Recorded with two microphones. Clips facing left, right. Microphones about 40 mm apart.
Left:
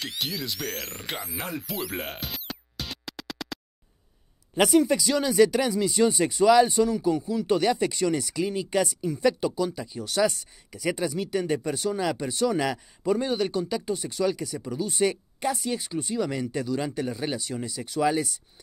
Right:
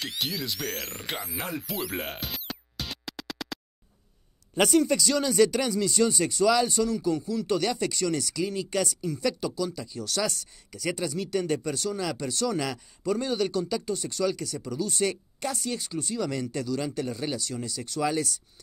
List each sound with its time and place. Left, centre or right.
0.0 s speech: centre
4.6 s speech: centre